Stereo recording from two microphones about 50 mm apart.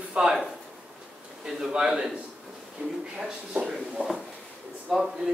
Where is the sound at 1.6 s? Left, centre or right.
Centre.